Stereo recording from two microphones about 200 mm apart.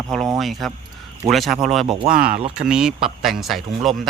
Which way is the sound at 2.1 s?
45° right (ahead or behind).